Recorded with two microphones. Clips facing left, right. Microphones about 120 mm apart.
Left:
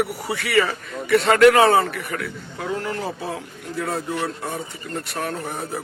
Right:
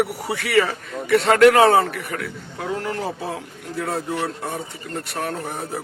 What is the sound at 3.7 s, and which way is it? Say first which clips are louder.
A man's voice: right 1 dB; 35° right (ahead or behind).